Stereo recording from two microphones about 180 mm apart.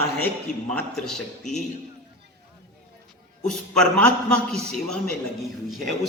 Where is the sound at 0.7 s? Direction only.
5° left (ahead or behind).